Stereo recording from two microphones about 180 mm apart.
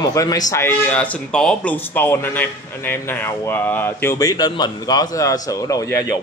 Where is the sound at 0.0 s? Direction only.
20° left (ahead or behind).